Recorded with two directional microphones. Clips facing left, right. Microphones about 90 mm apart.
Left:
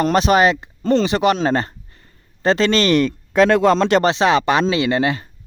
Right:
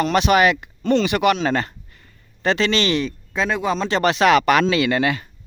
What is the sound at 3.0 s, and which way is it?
Speech, 75° left (ahead or behind).